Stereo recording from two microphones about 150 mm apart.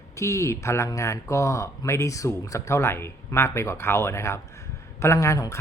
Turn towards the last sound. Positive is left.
turn(degrees=20)  # may be behind; listen again after turning